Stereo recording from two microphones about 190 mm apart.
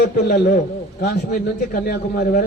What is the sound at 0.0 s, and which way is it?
A man's voice, 55° left (ahead or behind).